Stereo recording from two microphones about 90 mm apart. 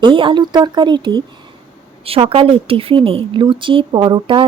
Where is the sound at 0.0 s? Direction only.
70° right (ahead or behind).